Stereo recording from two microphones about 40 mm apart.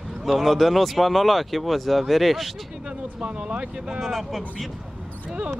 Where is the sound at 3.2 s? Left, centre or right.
Right.